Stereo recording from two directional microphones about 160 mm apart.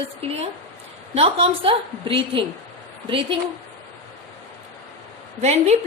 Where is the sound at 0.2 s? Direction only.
40° right (ahead or behind).